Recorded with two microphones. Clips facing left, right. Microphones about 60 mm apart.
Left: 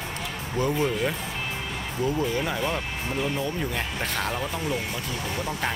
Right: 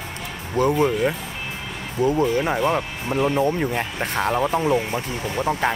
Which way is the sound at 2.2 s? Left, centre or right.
Right.